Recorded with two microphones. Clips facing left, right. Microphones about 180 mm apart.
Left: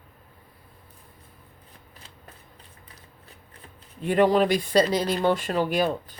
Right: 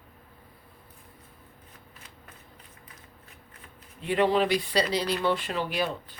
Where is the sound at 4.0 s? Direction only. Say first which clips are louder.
Left 4 dB; 45° left (ahead or behind).